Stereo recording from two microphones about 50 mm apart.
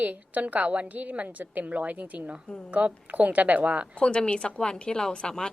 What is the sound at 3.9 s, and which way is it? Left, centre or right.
A woman's voice, left.